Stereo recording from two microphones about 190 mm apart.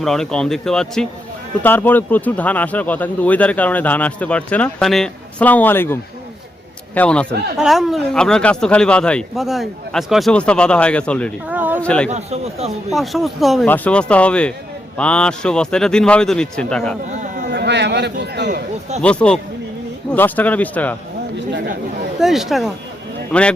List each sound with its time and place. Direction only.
0.0 s speech: centre (ahead or behind)
11.4 s a sound: 10° right (ahead or behind)
11.8 s speech: 5° left (ahead or behind)
12.0 s a man's voice: 35° right (ahead or behind)
12.9 s speech: centre (ahead or behind)
17.5 s speech: 60° right (ahead or behind)
19.0 s speech: 5° left (ahead or behind)
22.2 s speech: centre (ahead or behind)